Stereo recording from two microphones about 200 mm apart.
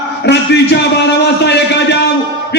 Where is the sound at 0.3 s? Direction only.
55° left (ahead or behind).